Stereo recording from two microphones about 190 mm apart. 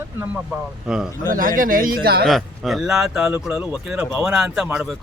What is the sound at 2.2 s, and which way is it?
Speech, centre (ahead or behind).